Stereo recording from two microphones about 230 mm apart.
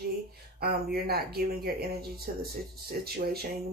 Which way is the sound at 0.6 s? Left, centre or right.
Right.